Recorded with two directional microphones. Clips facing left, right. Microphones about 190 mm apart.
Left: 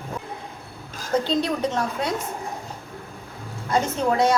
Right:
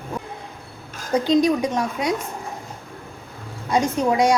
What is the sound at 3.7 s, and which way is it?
Speech, 15° right (ahead or behind).